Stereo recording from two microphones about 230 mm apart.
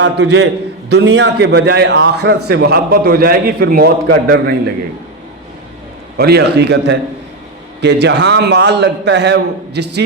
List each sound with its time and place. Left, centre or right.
0.0 s a man's voice: right
6.1 s a man's voice: right